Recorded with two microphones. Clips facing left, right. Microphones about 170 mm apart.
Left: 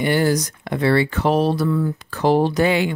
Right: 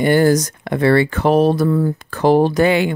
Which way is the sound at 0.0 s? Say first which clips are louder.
Right 5 dB; 45° right (ahead or behind).